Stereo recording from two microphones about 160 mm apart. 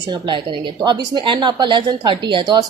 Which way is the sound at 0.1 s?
30° right (ahead or behind).